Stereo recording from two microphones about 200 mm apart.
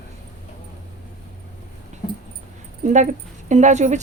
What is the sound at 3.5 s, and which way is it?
Speech, 35° right (ahead or behind).